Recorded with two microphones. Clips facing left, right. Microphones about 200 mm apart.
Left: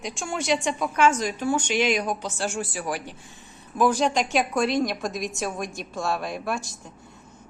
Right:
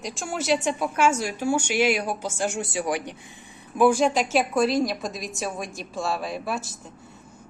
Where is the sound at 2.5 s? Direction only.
20° right (ahead or behind).